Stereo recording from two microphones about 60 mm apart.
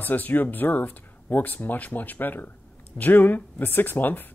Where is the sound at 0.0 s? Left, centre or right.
Left.